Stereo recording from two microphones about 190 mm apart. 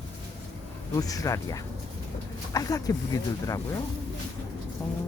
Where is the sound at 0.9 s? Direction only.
20° left (ahead or behind).